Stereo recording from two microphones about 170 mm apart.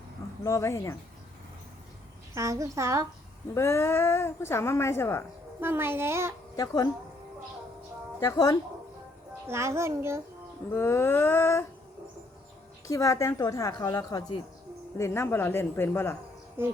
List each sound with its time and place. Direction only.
0.4 s speech: 15° left (ahead or behind)
2.3 s a woman's voice: 20° right (ahead or behind)
3.5 s speech: 15° left (ahead or behind)
5.5 s a woman's voice: 15° right (ahead or behind)
6.6 s a woman's voice: 20° left (ahead or behind)
8.2 s a woman's voice: 20° left (ahead or behind)
9.5 s a woman's voice: 15° right (ahead or behind)
10.7 s speech: 15° left (ahead or behind)
12.9 s a woman's voice: 20° left (ahead or behind)
16.6 s a woman's voice: 15° right (ahead or behind)